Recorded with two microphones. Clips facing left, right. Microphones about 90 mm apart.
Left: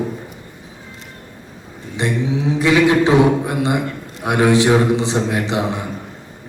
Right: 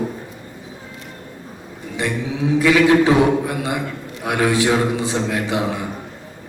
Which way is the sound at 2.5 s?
20° left (ahead or behind).